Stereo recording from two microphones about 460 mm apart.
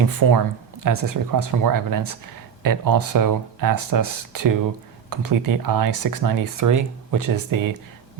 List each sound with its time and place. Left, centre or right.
0.9 s speech: right